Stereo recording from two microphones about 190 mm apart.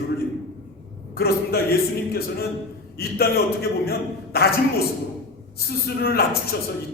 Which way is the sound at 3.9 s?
55° left (ahead or behind).